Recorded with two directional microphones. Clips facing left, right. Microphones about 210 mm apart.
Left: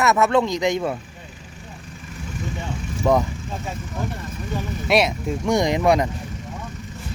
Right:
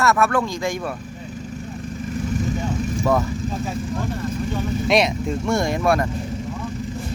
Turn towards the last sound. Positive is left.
turn(degrees=15)  # may be behind; listen again after turning